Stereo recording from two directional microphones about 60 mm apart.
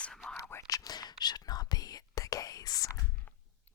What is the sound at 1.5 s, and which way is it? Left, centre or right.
Whispering, left.